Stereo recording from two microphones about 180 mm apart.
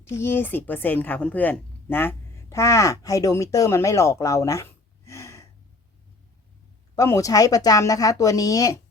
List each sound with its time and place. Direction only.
0.0 s speech: 15° left (ahead or behind)
6.9 s speech: 20° left (ahead or behind)